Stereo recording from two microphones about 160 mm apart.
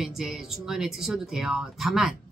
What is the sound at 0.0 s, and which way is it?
Speech, centre (ahead or behind).